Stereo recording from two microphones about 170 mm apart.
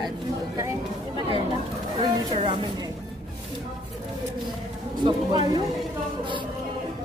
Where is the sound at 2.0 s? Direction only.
30° right (ahead or behind).